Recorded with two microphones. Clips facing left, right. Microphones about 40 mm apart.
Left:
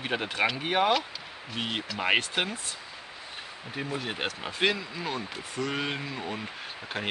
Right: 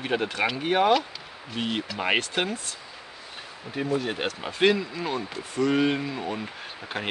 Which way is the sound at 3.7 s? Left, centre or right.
Centre.